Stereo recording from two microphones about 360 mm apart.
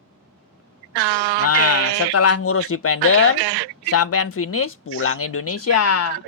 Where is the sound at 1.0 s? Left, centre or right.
Right.